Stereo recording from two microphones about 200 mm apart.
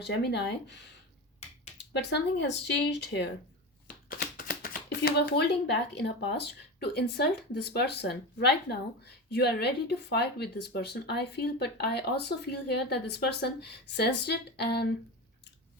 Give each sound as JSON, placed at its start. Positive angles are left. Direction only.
{"t": 0.0, "sound": "speech", "side_deg": 55}
{"t": 1.8, "sound": "speech", "side_deg": 60}
{"t": 4.2, "sound": "speech", "side_deg": 50}